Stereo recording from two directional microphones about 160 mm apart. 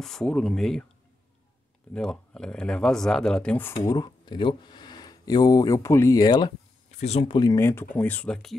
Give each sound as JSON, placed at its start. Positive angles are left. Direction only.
{"t": 0.0, "sound": "speech", "side_deg": 5}
{"t": 2.0, "sound": "speech", "side_deg": 5}
{"t": 3.8, "sound": "speech", "side_deg": 25}
{"t": 6.9, "sound": "speech", "side_deg": 40}